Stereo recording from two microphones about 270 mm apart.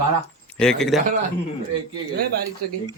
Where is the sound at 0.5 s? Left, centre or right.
Centre.